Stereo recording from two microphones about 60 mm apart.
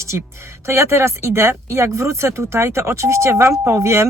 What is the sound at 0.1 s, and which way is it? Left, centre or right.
Speech, right.